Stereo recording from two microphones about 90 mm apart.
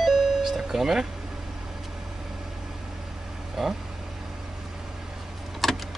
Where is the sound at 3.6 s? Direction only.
5° right (ahead or behind).